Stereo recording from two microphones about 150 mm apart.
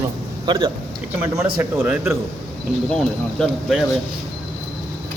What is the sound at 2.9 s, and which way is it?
Speech, 5° left (ahead or behind).